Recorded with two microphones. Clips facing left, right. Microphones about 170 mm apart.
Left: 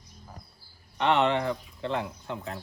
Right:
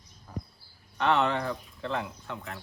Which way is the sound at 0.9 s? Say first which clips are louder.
Left 2 dB; 20° left (ahead or behind).